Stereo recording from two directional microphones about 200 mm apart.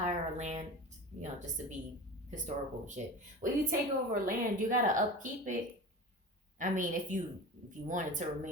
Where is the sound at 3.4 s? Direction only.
45° right (ahead or behind).